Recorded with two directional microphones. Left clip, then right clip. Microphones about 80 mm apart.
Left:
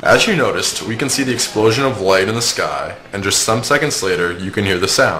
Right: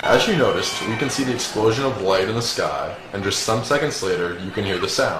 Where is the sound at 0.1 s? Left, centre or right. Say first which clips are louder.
Left 4 dB; left.